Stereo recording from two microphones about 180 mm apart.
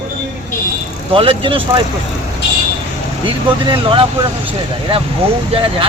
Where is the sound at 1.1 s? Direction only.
30° right (ahead or behind).